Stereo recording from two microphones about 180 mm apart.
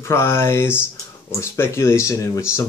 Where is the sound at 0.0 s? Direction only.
15° left (ahead or behind).